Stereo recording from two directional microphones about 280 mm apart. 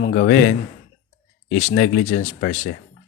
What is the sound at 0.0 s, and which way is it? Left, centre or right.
Speech, left.